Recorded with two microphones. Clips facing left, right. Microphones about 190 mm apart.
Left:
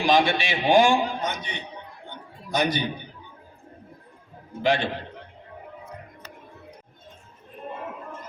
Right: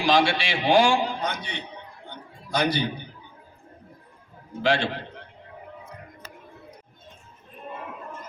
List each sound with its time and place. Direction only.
0.0 s a man's voice: 20° left (ahead or behind)
4.6 s a man's voice: 15° left (ahead or behind)